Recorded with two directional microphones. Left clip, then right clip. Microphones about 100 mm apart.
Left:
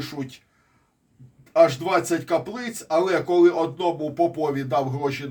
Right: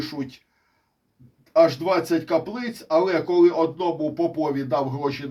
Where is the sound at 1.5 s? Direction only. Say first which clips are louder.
Even; 15° left (ahead or behind).